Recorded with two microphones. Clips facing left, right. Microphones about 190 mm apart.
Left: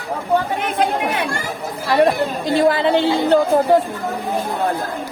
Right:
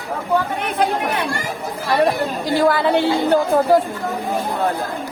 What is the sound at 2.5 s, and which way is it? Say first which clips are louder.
Speech: left 1 dB; 25° left (ahead or behind).